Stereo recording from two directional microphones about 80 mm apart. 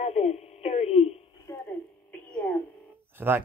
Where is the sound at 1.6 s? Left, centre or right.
Centre.